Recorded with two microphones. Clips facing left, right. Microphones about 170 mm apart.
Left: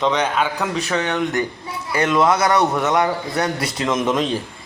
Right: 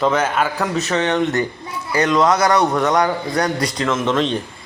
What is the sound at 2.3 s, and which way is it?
Speech, 25° left (ahead or behind).